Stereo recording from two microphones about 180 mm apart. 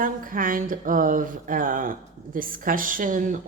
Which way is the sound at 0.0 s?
50° right (ahead or behind).